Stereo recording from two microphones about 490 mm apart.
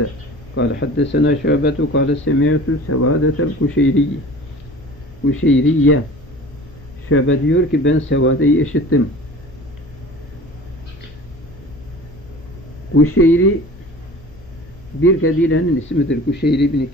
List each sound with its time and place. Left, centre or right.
0.6 s speech: left
5.2 s speech: left
7.1 s speech: left
12.9 s speech: left
15.0 s speech: left